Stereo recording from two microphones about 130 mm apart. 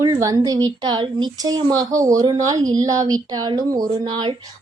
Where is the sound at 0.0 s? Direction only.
30° right (ahead or behind).